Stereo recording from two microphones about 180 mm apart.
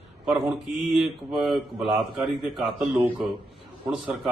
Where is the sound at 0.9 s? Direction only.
Centre (ahead or behind).